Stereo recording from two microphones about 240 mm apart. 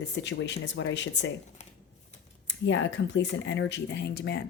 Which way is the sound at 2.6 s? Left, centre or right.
Left.